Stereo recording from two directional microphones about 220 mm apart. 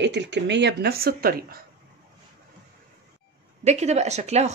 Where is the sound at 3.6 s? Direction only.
30° right (ahead or behind).